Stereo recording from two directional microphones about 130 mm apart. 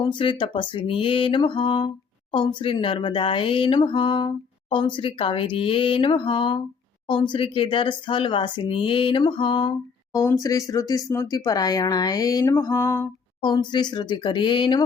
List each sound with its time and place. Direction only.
0.0 s speech: 40° left (ahead or behind)
10.2 s speech: 25° left (ahead or behind)
13.4 s speech: 35° left (ahead or behind)